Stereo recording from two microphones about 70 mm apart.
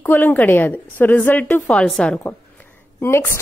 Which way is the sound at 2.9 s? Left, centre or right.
Left.